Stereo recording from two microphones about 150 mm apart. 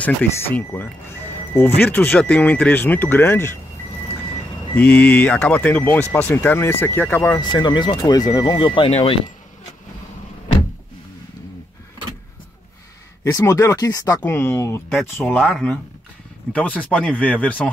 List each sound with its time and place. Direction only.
0.0 s speech: 10° left (ahead or behind)
1.8 s speech: 10° left (ahead or behind)
4.7 s speech: 10° left (ahead or behind)
7.5 s speech: 30° left (ahead or behind)
13.2 s speech: 20° left (ahead or behind)
14.2 s speech: 15° left (ahead or behind)
15.3 s speech: centre (ahead or behind)